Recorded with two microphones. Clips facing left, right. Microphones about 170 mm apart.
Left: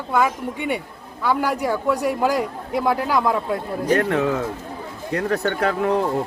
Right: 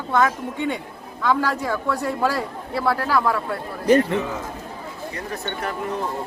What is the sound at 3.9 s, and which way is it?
A man's voice, 70° left (ahead or behind).